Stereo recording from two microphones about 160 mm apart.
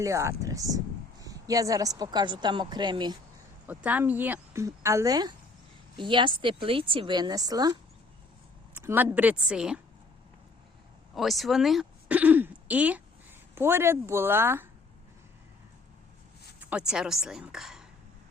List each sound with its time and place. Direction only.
0.0 s a woman's voice: 20° right (ahead or behind)
3.7 s a woman's voice: 10° right (ahead or behind)
8.7 s speech: 15° right (ahead or behind)
11.1 s speech: centre (ahead or behind)
16.6 s a woman's voice: 5° right (ahead or behind)